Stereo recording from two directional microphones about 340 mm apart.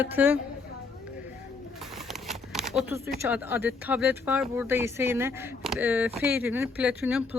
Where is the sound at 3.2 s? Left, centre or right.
Centre.